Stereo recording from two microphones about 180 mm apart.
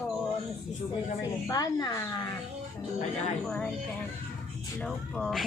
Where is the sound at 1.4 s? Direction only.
20° left (ahead or behind).